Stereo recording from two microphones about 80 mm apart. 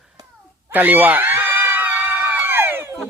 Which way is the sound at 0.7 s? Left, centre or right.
Right.